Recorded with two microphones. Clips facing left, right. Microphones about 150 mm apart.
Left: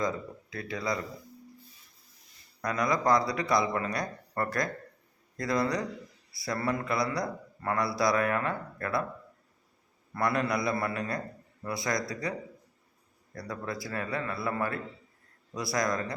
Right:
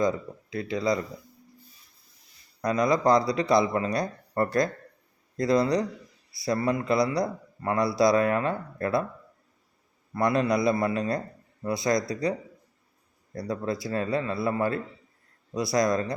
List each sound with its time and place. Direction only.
0.5 s a man's voice: 20° right (ahead or behind)
2.6 s a man's voice: 20° right (ahead or behind)
10.2 s a man's voice: 20° right (ahead or behind)
13.3 s a man's voice: 25° right (ahead or behind)